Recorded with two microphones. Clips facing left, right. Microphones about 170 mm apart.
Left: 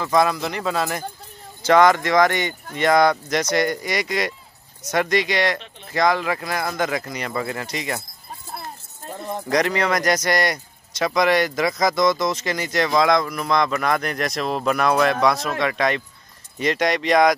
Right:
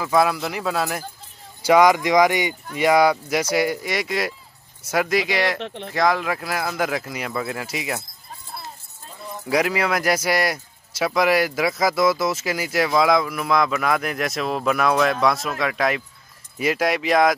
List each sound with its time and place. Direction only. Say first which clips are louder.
0.0 s speech: even; 5° right (ahead or behind)
5.6 s speech: right 11 dB; 75° right (ahead or behind)
5.9 s speech: left 1 dB; centre (ahead or behind)
8.5 s a sound: left 2 dB; 55° left (ahead or behind)
9.5 s speech: even; 5° right (ahead or behind)